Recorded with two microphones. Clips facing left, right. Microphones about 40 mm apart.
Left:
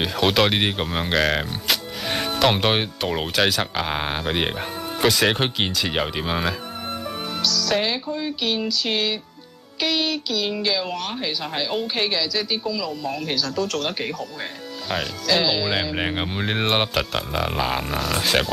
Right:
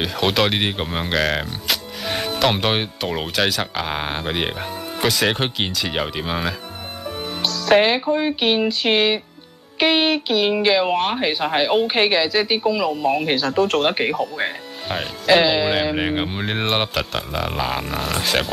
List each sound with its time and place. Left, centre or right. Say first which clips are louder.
0.0 s speech: even; centre
7.4 s speech: right 7 dB; right
16.0 s speech: right 3 dB; centre